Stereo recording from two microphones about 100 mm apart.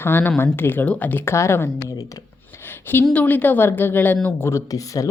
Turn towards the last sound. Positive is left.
turn(degrees=35)  # may be behind; listen again after turning